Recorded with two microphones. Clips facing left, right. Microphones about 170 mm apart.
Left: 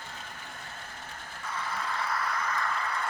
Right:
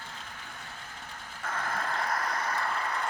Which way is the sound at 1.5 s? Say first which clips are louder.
Right 1 dB; 50° right (ahead or behind).